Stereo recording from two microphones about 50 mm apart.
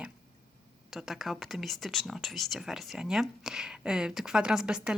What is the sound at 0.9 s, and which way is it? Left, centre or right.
Speech, centre.